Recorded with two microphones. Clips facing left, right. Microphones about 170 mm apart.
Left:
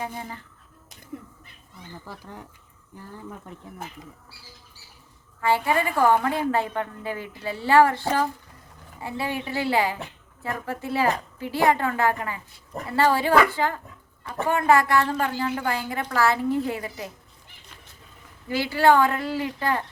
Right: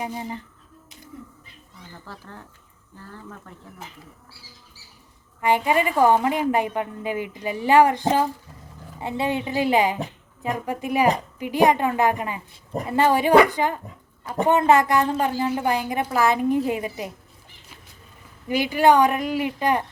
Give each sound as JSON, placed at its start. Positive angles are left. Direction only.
{"t": 1.1, "sound": "speech", "side_deg": 65}
{"t": 2.0, "sound": "speech", "side_deg": 15}
{"t": 5.4, "sound": "a woman's voice", "side_deg": -20}
{"t": 18.4, "sound": "a woman's voice", "side_deg": -15}